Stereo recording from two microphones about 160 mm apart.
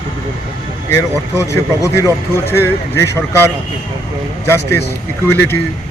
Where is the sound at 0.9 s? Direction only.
20° left (ahead or behind).